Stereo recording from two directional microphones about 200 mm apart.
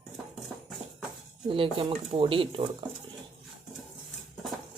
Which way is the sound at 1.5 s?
25° right (ahead or behind).